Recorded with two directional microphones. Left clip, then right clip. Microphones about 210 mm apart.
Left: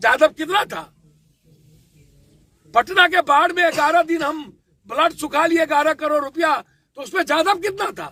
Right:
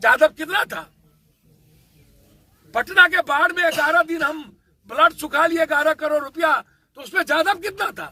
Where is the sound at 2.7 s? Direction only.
10° right (ahead or behind).